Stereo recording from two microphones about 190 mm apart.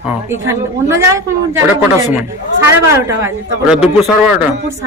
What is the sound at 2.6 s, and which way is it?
A man's voice, 15° right (ahead or behind).